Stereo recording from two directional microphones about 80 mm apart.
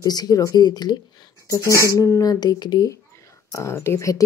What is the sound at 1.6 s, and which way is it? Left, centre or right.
Speech, right.